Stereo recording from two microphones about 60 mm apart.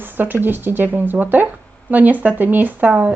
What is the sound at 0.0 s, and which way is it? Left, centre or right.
A woman's voice, right.